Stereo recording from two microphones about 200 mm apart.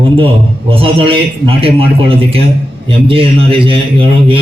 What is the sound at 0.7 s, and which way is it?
A man's voice, 25° right (ahead or behind).